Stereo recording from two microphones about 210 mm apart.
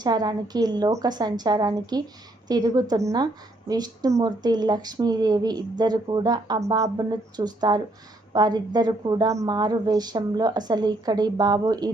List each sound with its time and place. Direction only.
0.0 s a woman's voice: 20° right (ahead or behind)